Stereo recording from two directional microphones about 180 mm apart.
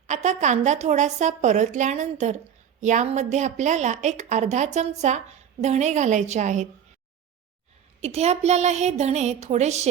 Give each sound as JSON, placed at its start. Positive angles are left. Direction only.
{"t": 0.1, "sound": "a woman's voice", "side_deg": -40}
{"t": 8.0, "sound": "a woman's voice", "side_deg": -35}